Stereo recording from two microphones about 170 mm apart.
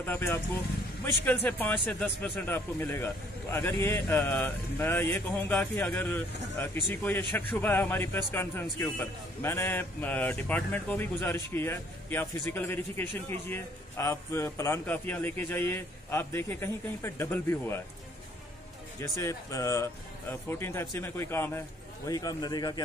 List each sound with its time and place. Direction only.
0.0 s speech: 15° left (ahead or behind)
18.9 s speech: 15° left (ahead or behind)